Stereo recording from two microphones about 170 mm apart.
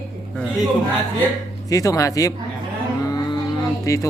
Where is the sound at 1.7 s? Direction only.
20° left (ahead or behind).